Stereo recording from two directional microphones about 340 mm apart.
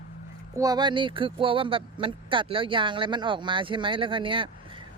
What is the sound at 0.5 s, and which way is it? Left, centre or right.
Speech, centre.